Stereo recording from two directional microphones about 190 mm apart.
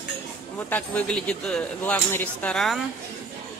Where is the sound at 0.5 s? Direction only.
10° left (ahead or behind).